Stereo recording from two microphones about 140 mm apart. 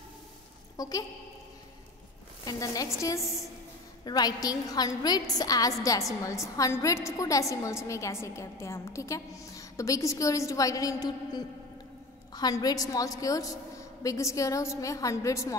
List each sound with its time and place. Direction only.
0.7 s a woman's voice: 25° left (ahead or behind)
2.4 s a woman's voice: 25° left (ahead or behind)